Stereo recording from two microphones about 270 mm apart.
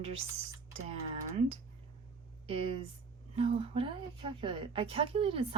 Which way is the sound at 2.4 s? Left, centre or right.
Right.